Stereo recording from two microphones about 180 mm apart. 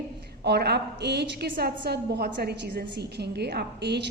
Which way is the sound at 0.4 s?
65° right (ahead or behind).